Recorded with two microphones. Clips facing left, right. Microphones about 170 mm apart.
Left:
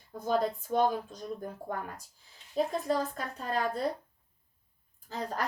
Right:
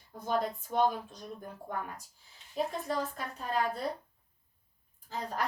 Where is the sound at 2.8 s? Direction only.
40° left (ahead or behind).